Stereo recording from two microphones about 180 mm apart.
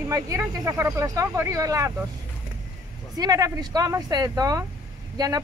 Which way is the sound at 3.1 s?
20° right (ahead or behind).